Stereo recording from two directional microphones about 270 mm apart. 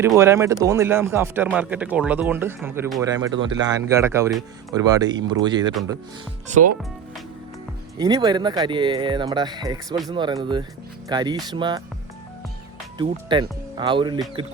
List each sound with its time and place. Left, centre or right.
0.0 s speech: centre
7.9 s speech: centre
13.0 s speech: centre